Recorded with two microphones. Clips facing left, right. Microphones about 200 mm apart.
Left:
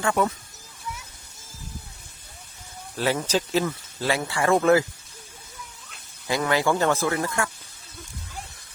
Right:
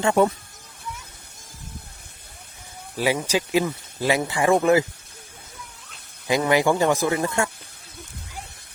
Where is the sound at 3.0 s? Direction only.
10° right (ahead or behind).